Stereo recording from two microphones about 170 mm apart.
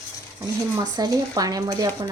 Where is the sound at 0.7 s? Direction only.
20° right (ahead or behind).